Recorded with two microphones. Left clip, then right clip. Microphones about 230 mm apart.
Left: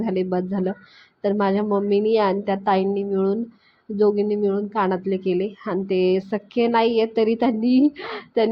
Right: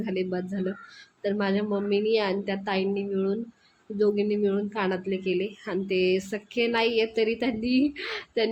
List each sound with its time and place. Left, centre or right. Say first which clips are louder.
0.0 s a woman's voice: left 6 dB; centre